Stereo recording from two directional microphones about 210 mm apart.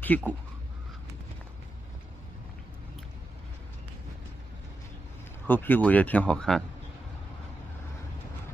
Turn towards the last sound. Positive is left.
turn(degrees=5)  # may be behind; listen again after turning